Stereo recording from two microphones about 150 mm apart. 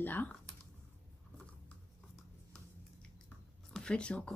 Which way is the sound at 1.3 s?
10° left (ahead or behind).